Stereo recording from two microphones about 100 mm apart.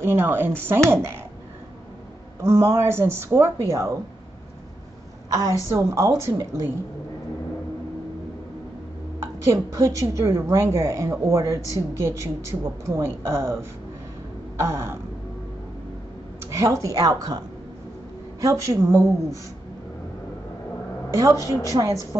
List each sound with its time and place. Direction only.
0.0 s a woman's voice: 25° right (ahead or behind)
2.4 s a woman's voice: 25° right (ahead or behind)
5.3 s a woman's voice: 35° right (ahead or behind)
9.2 s a woman's voice: 25° right (ahead or behind)
16.4 s speech: 30° right (ahead or behind)
18.4 s a woman's voice: 35° right (ahead or behind)
21.1 s a woman's voice: 30° right (ahead or behind)